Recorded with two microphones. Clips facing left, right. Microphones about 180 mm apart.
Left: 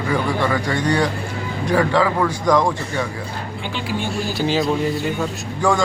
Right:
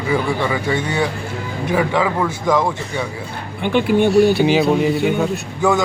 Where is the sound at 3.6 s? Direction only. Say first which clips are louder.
Right 12 dB; 55° right (ahead or behind).